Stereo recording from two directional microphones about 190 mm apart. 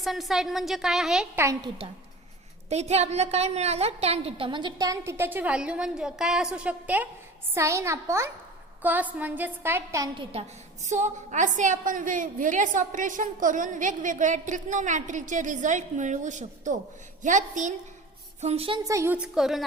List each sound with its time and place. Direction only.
0.0 s a woman's voice: centre (ahead or behind)
1.4 s a woman's voice: 15° right (ahead or behind)
2.6 s a woman's voice: 35° right (ahead or behind); by 10.2 s 15° right (ahead or behind)
10.8 s a woman's voice: 40° right (ahead or behind)
18.9 s a woman's voice: 15° right (ahead or behind)